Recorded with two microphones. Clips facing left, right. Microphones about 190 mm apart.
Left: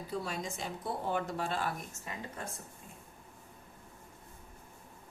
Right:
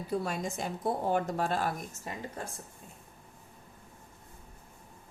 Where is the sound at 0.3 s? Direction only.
50° right (ahead or behind).